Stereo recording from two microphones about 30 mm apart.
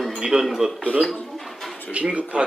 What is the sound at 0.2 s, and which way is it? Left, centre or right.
Speech, centre.